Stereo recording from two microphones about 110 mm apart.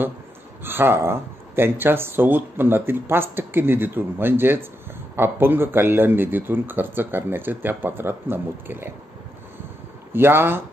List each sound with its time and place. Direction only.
0.7 s speech: 20° right (ahead or behind)
10.1 s speech: 20° right (ahead or behind)